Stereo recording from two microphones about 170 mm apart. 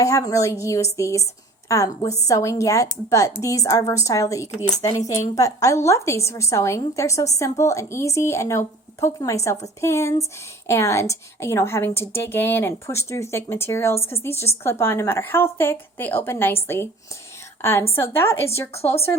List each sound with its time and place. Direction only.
0.0 s a woman's voice: 20° left (ahead or behind)